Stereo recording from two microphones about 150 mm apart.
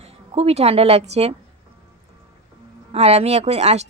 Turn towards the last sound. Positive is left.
turn(degrees=-45)  # may be behind; listen again after turning